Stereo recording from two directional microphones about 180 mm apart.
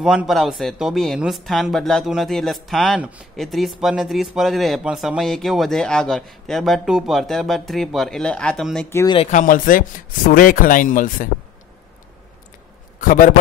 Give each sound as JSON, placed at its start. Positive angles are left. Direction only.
{"t": 0.0, "sound": "speech", "side_deg": -5}
{"t": 8.9, "sound": "speech", "side_deg": 20}
{"t": 9.2, "sound": "a man's voice", "side_deg": 45}
{"t": 13.0, "sound": "a man's voice", "side_deg": 50}